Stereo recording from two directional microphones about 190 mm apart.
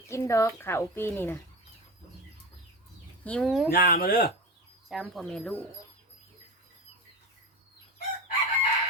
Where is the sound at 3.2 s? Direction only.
5° left (ahead or behind).